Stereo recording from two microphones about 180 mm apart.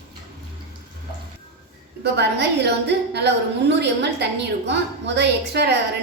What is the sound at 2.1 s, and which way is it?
A woman's voice, 70° right (ahead or behind).